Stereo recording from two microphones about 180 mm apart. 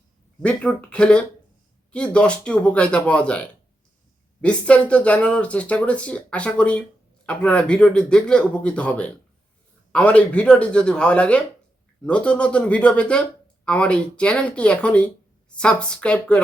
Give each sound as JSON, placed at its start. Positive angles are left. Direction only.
{"t": 0.4, "sound": "speech", "side_deg": 5}